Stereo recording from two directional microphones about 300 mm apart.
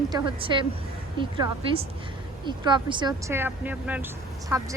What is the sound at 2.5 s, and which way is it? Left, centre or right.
Speech, centre.